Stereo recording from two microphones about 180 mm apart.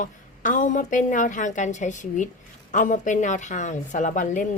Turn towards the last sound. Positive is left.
turn(degrees=45)  # may be behind; listen again after turning